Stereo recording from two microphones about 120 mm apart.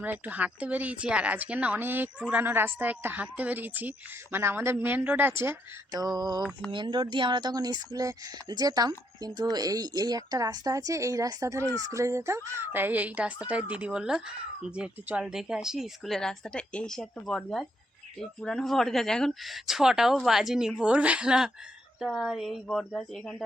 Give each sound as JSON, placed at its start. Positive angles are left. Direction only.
{"t": 0.0, "sound": "a woman's voice", "side_deg": -15}
{"t": 5.9, "sound": "speech", "side_deg": -30}